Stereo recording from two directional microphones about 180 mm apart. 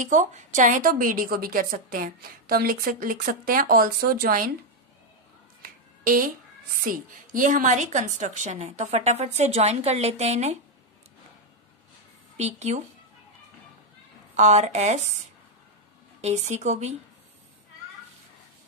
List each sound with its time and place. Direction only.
0.0 s a woman's voice: 45° right (ahead or behind)
5.6 s finger snapping: 50° right (ahead or behind)
6.8 s a woman's voice: 50° right (ahead or behind)
12.4 s a woman's voice: 40° right (ahead or behind)
14.3 s a woman's voice: 40° right (ahead or behind)
16.2 s a woman's voice: 40° right (ahead or behind)